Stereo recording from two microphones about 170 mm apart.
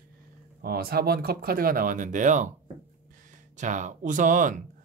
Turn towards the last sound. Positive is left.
turn(degrees=-50)  # may be behind; listen again after turning